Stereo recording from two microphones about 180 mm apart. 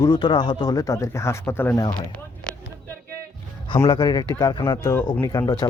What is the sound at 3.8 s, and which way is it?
Speech, 25° left (ahead or behind).